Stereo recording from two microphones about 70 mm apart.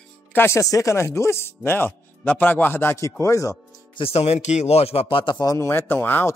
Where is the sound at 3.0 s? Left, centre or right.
Left.